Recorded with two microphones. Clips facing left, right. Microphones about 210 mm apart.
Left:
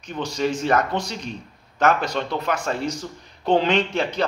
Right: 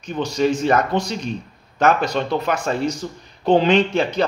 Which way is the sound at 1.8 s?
15° right (ahead or behind).